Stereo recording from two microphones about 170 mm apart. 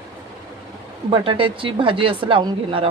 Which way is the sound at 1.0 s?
30° right (ahead or behind).